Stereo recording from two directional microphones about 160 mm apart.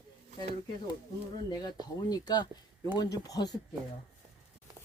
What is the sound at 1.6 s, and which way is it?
Speech, 25° left (ahead or behind).